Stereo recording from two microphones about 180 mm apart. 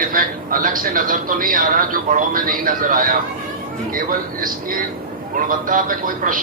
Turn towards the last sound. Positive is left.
turn(degrees=-50)  # may be behind; listen again after turning